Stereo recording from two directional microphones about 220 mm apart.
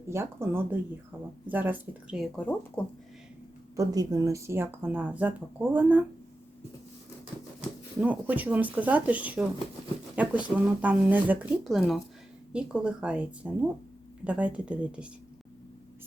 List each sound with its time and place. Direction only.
0.1 s speech: 10° right (ahead or behind); by 2.8 s 5° left (ahead or behind)
3.8 s speech: 15° right (ahead or behind)
8.0 s speech: 5° right (ahead or behind)